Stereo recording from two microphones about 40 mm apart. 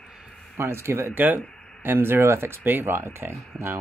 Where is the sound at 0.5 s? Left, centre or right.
Right.